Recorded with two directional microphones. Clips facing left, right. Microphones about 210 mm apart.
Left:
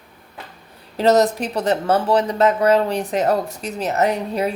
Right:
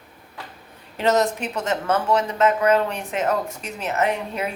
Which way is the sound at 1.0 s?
35° left (ahead or behind).